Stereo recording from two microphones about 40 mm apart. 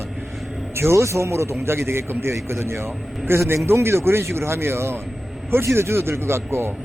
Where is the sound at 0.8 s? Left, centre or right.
Right.